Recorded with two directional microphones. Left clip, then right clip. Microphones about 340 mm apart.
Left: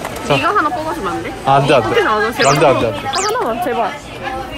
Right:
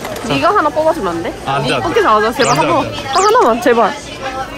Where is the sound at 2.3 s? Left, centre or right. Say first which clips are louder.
Left 1 dB; centre.